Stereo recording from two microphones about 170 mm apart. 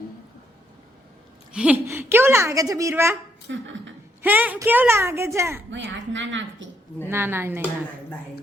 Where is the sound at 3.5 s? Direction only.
90° right.